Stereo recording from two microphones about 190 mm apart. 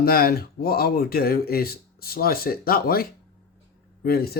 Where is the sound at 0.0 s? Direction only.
50° left (ahead or behind).